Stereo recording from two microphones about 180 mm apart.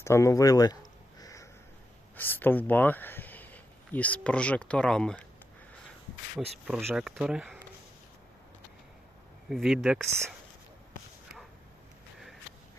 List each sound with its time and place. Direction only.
0.0 s a sound: 15° left (ahead or behind)
2.1 s speech: 10° left (ahead or behind)
6.3 s speech: centre (ahead or behind)
9.5 s speech: centre (ahead or behind)